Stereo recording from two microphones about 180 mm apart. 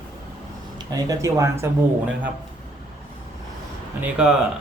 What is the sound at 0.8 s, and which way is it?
Speech, 20° right (ahead or behind).